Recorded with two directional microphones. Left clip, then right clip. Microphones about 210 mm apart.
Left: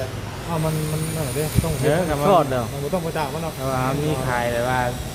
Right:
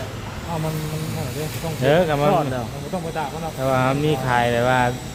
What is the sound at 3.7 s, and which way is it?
Speech, 60° right (ahead or behind).